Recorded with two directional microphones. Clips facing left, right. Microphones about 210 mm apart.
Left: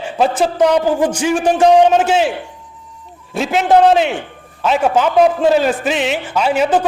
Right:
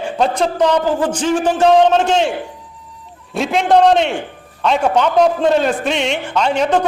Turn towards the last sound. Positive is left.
turn(degrees=5)  # may be behind; listen again after turning